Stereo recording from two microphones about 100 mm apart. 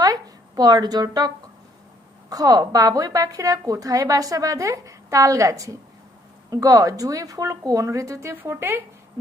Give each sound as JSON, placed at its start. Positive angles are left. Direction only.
{"t": 0.0, "sound": "a sound", "side_deg": -40}
{"t": 1.0, "sound": "a woman's voice", "side_deg": -40}
{"t": 2.3, "sound": "a woman's voice", "side_deg": -40}